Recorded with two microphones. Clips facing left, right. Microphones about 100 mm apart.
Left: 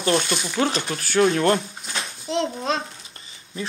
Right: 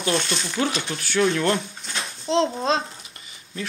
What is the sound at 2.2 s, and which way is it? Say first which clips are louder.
Speech: right 3 dB; 30° right (ahead or behind).